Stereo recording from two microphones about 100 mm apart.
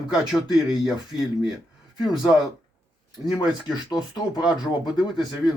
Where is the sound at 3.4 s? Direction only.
45° left (ahead or behind).